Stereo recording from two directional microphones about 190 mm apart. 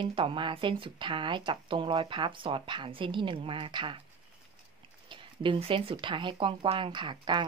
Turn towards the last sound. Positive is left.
turn(degrees=-25)  # may be behind; listen again after turning